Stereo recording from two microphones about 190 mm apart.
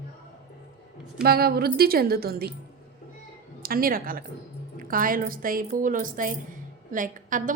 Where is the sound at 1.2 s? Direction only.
55° right (ahead or behind).